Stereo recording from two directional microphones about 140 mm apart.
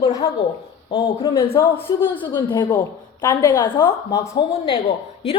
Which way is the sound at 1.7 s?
40° left (ahead or behind).